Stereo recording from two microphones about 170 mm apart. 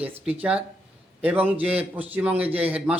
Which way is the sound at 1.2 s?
10° right (ahead or behind).